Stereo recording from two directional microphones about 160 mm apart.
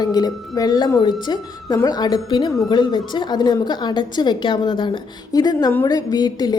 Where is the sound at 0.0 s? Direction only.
25° left (ahead or behind).